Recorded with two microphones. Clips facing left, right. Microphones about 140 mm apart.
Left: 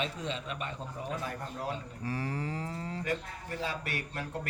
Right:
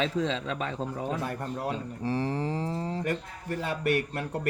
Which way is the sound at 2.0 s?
30° right (ahead or behind).